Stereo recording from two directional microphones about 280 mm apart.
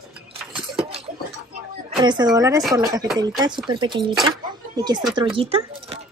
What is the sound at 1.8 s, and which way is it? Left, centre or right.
A woman's voice, centre.